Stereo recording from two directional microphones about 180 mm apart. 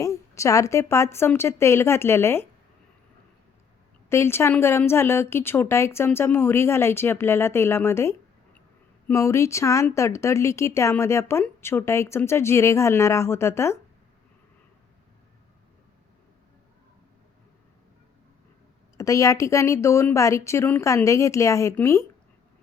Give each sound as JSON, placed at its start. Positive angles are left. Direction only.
{"t": 0.0, "sound": "speech", "side_deg": 15}
{"t": 4.1, "sound": "speech", "side_deg": 15}
{"t": 18.9, "sound": "speech", "side_deg": 20}